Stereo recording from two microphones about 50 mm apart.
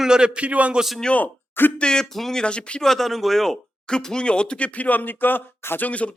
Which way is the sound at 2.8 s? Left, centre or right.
Centre.